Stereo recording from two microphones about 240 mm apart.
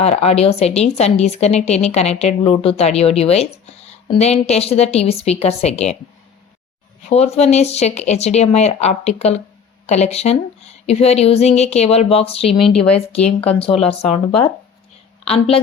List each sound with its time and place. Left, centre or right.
0.0 s a woman's voice: left
7.1 s a woman's voice: left